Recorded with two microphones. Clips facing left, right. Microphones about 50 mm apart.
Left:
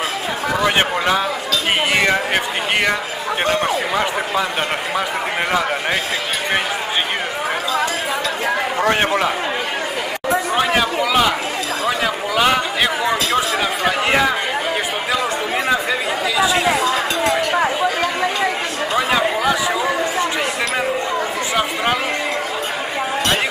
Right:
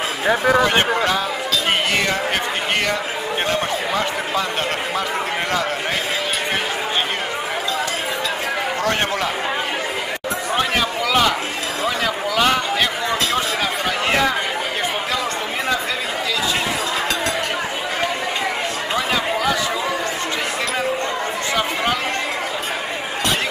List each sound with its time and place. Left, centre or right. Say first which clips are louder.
0.7 s speech: left 1 dB; centre
8.8 s a man's voice: left 5 dB; left
10.5 s a sound: even; centre
13.8 s speech: left 3 dB; centre
18.9 s chatter: left 4 dB; centre